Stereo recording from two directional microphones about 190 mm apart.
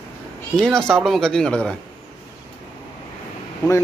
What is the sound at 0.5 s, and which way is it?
Speech, 5° left (ahead or behind).